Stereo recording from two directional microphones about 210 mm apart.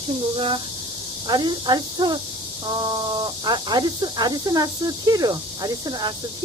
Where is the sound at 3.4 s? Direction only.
20° right (ahead or behind).